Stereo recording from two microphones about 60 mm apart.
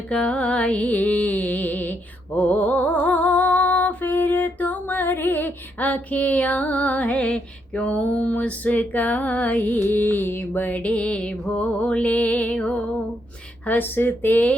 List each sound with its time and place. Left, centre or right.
0.1 s music: centre
13.7 s speech: left